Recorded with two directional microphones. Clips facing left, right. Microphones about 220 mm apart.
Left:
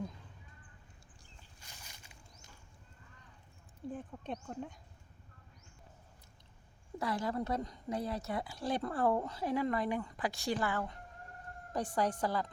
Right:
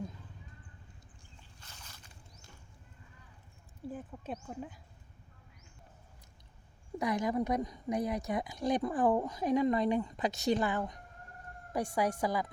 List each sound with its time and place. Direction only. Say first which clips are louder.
1.6 s boat: right 1 dB; 15° left (ahead or behind)
3.8 s speech: even; 5° right (ahead or behind)
7.0 s a woman's voice: right 4 dB; 15° right (ahead or behind)